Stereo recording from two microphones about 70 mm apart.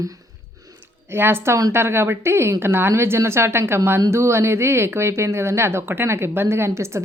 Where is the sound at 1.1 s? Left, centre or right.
Right.